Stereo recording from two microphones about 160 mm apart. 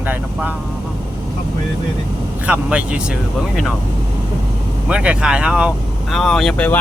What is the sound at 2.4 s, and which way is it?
Speech, 5° right (ahead or behind).